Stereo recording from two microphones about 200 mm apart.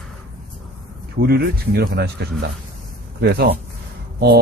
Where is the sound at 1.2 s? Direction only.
50° right (ahead or behind).